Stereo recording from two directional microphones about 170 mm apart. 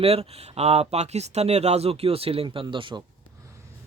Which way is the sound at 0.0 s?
35° right (ahead or behind).